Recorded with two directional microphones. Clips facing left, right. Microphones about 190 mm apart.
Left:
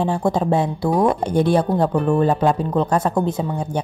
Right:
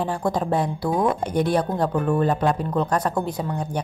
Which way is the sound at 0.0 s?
25° left (ahead or behind).